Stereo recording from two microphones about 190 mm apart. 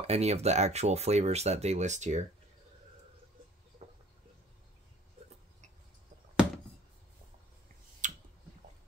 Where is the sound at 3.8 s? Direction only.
35° right (ahead or behind).